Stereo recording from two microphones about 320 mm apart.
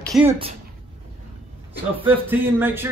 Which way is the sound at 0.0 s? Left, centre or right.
Centre.